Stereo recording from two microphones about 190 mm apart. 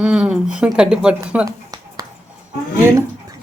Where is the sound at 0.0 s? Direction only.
5° right (ahead or behind).